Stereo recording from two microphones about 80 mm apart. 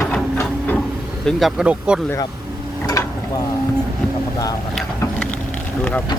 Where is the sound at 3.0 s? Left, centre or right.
Left.